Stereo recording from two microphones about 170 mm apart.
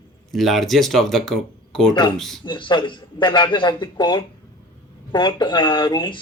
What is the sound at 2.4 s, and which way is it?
Speech, 30° left (ahead or behind).